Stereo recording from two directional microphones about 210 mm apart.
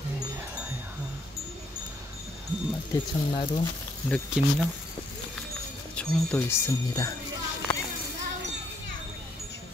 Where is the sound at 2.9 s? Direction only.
25° left (ahead or behind).